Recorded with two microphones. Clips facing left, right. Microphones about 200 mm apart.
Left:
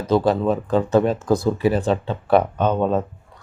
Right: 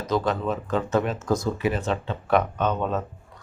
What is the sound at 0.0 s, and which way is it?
Speech, 30° left (ahead or behind).